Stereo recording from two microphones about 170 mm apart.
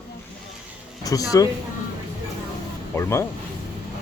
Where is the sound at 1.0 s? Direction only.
20° left (ahead or behind).